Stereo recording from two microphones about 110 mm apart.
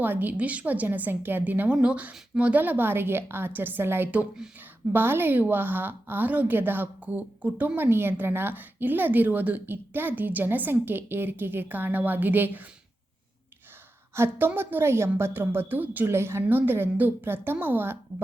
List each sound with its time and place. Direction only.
0.0 s a woman's voice: 15° right (ahead or behind)
14.2 s a woman's voice: 20° right (ahead or behind)